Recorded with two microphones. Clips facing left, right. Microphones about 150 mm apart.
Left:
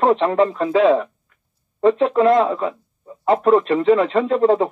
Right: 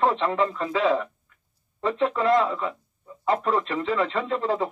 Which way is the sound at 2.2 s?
45° left (ahead or behind).